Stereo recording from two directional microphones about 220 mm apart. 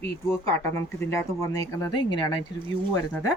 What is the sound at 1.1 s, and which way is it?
Speech, 15° left (ahead or behind).